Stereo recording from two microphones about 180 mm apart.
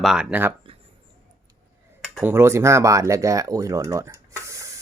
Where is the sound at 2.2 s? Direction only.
10° right (ahead or behind).